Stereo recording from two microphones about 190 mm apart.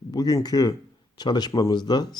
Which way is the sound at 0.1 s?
20° left (ahead or behind).